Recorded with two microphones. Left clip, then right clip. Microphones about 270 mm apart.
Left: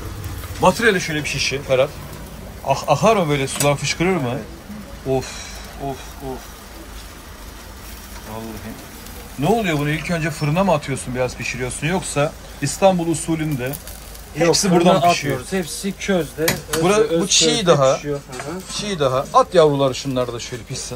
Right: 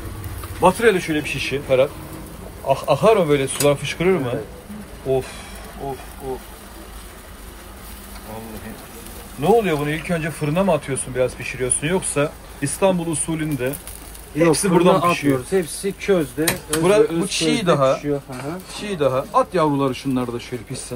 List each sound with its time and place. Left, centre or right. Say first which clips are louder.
0.6 s speech: even; centre
9.4 s speech: right 2 dB; centre
15.5 s speech: right 3 dB; centre
16.8 s speech: even; centre